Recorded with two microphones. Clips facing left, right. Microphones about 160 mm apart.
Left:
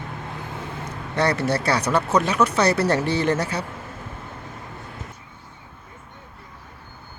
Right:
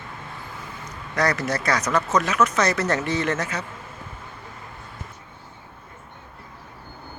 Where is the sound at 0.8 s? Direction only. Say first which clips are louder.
Left 1 dB; 30° left (ahead or behind).